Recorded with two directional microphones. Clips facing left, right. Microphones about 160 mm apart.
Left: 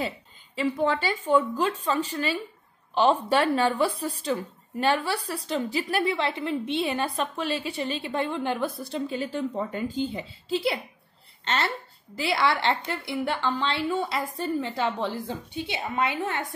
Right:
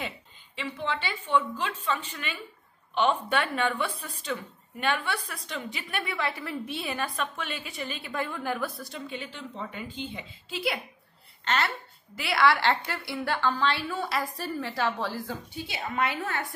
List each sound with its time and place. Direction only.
0.6 s a woman's voice: 40° left (ahead or behind); by 16.4 s 20° left (ahead or behind)